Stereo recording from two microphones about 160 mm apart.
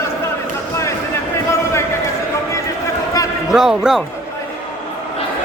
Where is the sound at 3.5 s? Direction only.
Centre (ahead or behind).